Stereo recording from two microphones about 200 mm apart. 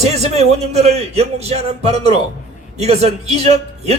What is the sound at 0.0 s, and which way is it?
A man's voice, 30° right (ahead or behind).